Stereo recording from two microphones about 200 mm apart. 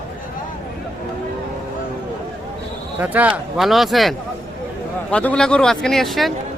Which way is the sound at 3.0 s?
10° right (ahead or behind).